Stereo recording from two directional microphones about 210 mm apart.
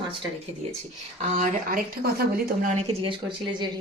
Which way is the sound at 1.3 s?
45° right (ahead or behind).